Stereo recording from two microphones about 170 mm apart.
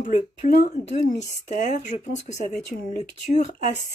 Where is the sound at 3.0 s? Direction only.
45° left (ahead or behind).